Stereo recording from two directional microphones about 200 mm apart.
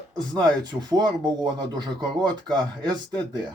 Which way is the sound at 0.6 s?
20° right (ahead or behind).